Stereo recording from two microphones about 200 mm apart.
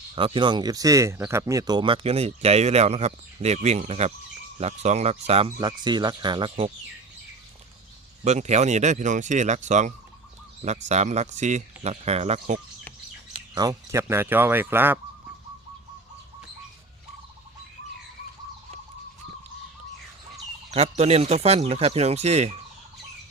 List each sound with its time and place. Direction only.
0.2 s speech: 25° right (ahead or behind)
8.2 s speech: 35° right (ahead or behind)
13.5 s speech: 20° right (ahead or behind)
20.7 s speech: 35° right (ahead or behind)